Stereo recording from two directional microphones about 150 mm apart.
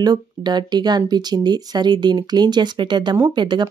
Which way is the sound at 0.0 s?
30° right (ahead or behind).